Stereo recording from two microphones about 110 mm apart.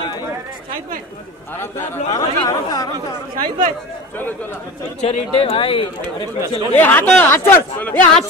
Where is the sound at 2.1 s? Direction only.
30° left (ahead or behind).